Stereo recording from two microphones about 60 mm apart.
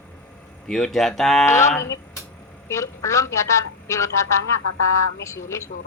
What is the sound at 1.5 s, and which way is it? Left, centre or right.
A woman's voice, left.